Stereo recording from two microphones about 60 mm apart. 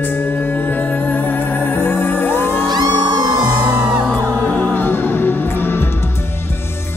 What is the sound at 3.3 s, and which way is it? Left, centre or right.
Music, right.